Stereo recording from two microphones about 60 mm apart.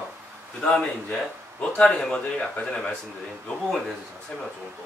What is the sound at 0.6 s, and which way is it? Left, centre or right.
A man's voice, centre.